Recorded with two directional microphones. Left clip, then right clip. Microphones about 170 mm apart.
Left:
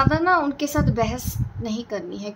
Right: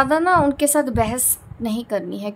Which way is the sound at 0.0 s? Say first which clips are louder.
Right 3 dB; 35° right (ahead or behind).